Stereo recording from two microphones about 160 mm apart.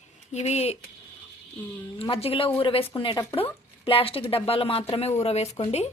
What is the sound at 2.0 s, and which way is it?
Speech, 35° left (ahead or behind).